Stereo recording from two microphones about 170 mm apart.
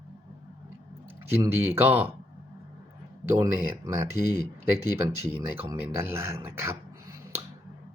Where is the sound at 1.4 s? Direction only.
15° right (ahead or behind).